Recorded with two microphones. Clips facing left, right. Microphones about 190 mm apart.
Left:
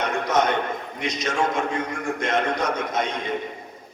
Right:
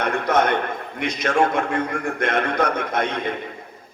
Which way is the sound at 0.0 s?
55° right (ahead or behind).